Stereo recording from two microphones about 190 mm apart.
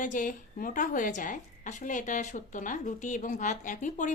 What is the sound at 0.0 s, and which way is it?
A woman's voice, 40° left (ahead or behind).